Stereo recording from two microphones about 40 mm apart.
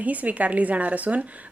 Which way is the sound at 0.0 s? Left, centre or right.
Right.